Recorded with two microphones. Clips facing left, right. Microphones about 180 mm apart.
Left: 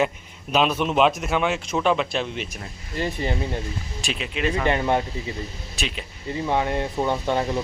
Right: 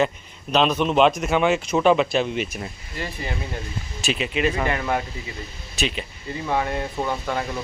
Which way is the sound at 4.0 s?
5° right (ahead or behind).